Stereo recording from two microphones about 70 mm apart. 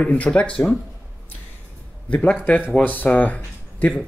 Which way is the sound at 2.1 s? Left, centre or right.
Centre.